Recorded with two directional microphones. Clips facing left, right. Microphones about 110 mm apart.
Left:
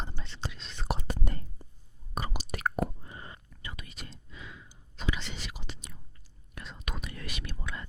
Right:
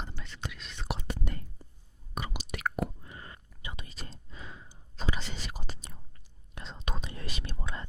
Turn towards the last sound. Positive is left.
turn(degrees=-30)  # may be behind; listen again after turning